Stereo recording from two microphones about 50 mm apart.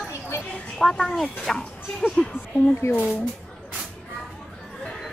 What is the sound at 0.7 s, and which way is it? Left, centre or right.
A woman's voice, centre.